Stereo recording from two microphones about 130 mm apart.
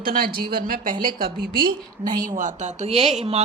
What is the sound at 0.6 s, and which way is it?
Speech, 90° right.